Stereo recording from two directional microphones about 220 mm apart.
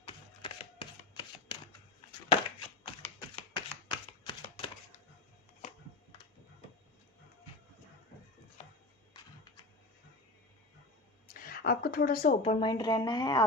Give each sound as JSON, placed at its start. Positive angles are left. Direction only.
{"t": 0.1, "sound": "typewriter", "side_deg": 20}
{"t": 2.8, "sound": "a sound", "side_deg": 20}
{"t": 8.6, "sound": "music", "side_deg": 30}
{"t": 11.3, "sound": "a woman's voice", "side_deg": 40}